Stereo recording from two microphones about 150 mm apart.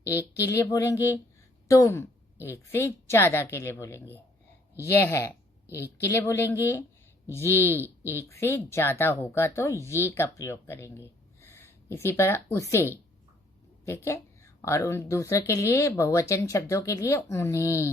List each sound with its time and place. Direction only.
0.4 s a woman's voice: 20° left (ahead or behind)